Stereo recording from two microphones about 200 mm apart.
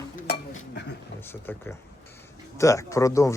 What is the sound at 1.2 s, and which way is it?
Speech, 10° left (ahead or behind).